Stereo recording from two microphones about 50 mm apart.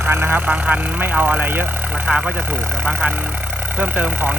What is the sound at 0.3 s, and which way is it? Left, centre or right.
Speech, right.